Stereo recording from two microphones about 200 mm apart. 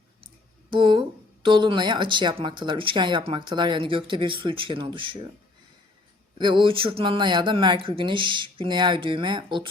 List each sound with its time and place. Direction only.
0.7 s a woman's voice: 25° right (ahead or behind)
6.4 s a woman's voice: 25° right (ahead or behind)